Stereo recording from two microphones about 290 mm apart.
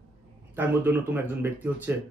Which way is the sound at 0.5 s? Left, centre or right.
Centre.